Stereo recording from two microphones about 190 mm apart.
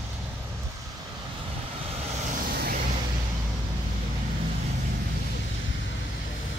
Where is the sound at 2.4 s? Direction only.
55° right (ahead or behind).